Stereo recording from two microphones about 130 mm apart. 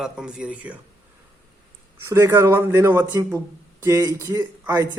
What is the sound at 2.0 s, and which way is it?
A man's voice, 20° right (ahead or behind).